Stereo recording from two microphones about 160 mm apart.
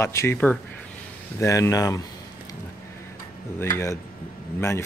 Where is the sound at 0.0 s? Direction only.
15° left (ahead or behind).